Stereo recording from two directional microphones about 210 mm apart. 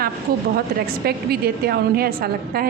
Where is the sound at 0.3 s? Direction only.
45° right (ahead or behind).